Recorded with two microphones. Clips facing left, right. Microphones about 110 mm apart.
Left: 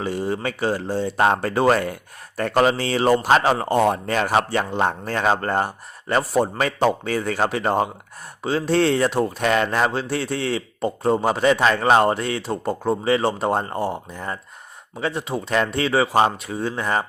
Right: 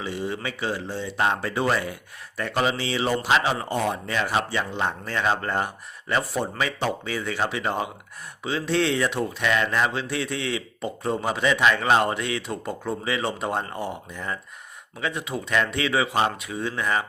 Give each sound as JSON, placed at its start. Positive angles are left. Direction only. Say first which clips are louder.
{"t": 0.0, "sound": "speech", "louder": "left 5 dB", "side_deg": 45}